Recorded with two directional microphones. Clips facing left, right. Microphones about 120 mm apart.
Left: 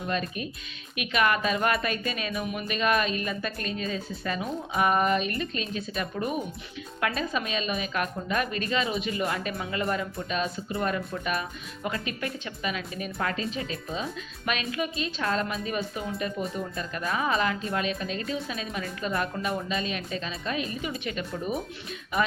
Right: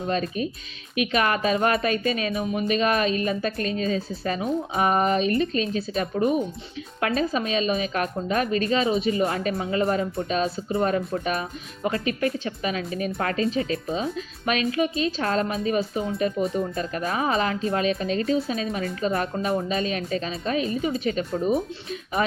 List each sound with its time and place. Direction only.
0.9 s a woman's voice: 35° right (ahead or behind)